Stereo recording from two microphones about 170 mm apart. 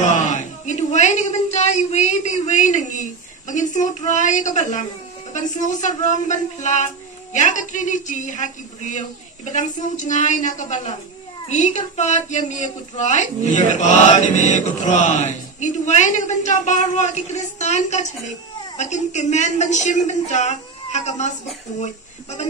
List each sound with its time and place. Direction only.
0.0 s speech: 45° left (ahead or behind)